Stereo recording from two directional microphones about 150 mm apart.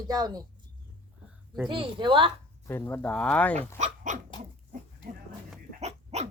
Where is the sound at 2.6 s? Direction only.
15° left (ahead or behind).